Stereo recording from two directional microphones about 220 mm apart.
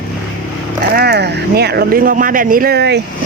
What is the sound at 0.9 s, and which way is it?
Speech, 45° right (ahead or behind).